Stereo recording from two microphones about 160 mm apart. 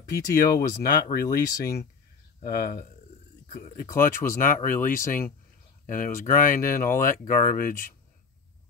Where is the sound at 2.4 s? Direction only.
65° left (ahead or behind).